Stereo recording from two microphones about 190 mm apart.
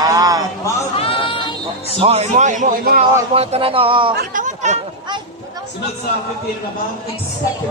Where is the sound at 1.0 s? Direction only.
25° left (ahead or behind).